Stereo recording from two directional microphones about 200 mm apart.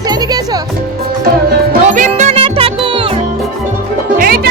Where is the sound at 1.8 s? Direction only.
40° right (ahead or behind).